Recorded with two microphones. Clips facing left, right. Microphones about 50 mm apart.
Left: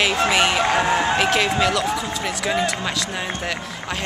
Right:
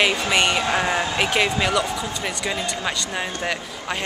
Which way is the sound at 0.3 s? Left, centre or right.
Centre.